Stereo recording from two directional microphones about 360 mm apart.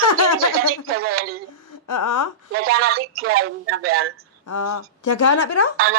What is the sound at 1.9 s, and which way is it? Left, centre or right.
Speech, left.